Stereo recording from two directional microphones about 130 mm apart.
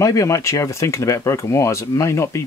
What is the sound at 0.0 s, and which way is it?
Speech, 25° left (ahead or behind).